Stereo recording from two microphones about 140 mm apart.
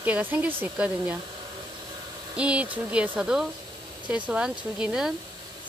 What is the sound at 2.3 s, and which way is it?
Speech, 10° right (ahead or behind).